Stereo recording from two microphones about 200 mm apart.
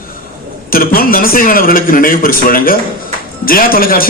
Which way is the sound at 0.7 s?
45° left (ahead or behind).